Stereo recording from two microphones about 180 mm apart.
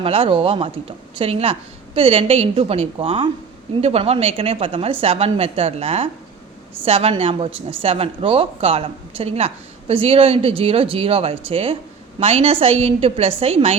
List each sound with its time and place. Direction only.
0.0 s a woman's voice: 30° right (ahead or behind)